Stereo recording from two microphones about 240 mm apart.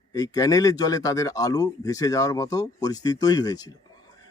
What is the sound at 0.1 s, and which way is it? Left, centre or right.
Speech, centre.